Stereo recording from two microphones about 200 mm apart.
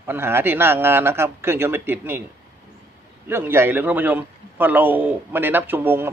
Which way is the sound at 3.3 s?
10° right (ahead or behind).